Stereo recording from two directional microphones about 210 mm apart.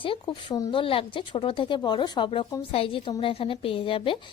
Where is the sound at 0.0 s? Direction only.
25° left (ahead or behind).